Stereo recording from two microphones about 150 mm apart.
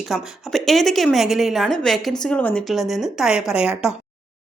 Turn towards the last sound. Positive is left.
turn(degrees=-5)  # may be behind; listen again after turning